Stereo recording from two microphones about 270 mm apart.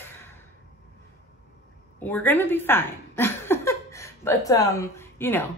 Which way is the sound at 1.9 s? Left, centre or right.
Centre.